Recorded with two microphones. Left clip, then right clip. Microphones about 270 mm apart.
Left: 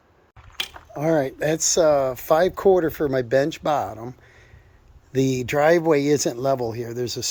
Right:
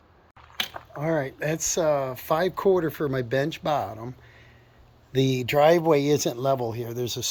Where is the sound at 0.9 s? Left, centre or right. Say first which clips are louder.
Left 6 dB; left.